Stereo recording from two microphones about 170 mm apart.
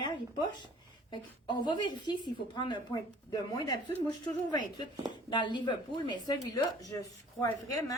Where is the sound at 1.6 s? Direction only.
25° left (ahead or behind).